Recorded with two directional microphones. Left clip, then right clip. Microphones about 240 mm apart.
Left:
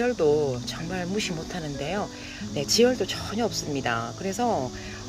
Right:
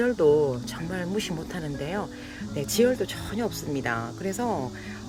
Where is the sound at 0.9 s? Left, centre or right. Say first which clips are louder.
Left 1 dB; centre.